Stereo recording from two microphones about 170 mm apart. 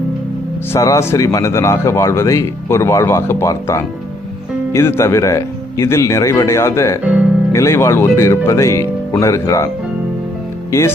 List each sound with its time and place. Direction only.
0.7 s speech: 15° left (ahead or behind)
7.0 s speech: 5° right (ahead or behind)
7.5 s speech: 15° left (ahead or behind)
10.7 s speech: 15° left (ahead or behind)